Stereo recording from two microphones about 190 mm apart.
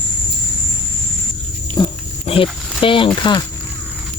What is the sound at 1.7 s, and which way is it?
Pig, 25° left (ahead or behind).